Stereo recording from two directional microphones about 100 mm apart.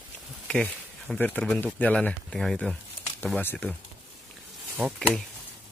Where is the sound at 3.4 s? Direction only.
15° left (ahead or behind).